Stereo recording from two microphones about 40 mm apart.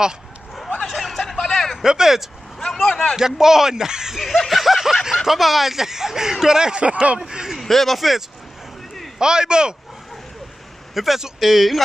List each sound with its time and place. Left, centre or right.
0.8 s snicker: centre
1.8 s speech: centre
2.6 s a sound: centre
3.2 s speech: centre
6.8 s speech: right
7.2 s speech: centre
7.6 s speech: centre
9.2 s speech: centre
11.0 s speech: centre